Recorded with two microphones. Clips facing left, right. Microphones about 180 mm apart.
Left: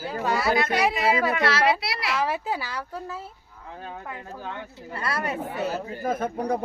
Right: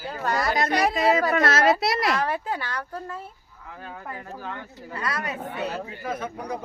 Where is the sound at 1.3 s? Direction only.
45° right (ahead or behind).